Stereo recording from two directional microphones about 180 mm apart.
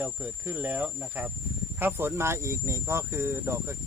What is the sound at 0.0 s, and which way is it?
Cricket, 10° right (ahead or behind).